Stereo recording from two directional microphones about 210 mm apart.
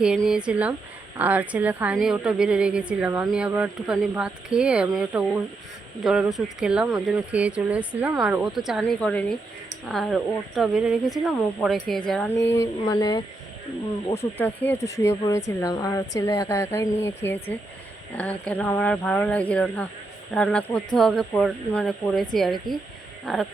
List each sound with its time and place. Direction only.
0.0 s a woman's voice: 5° right (ahead or behind)
12.5 s speech: 20° left (ahead or behind)
14.3 s a woman's voice: 10° left (ahead or behind)